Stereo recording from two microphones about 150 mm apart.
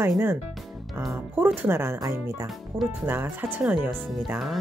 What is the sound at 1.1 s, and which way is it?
Speech, 15° right (ahead or behind).